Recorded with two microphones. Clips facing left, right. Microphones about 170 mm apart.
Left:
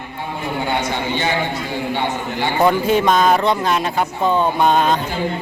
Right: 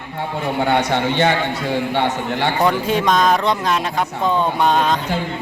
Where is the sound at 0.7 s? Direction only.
70° right (ahead or behind).